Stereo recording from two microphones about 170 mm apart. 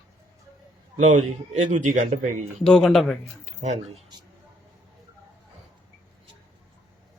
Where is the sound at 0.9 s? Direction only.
45° right (ahead or behind).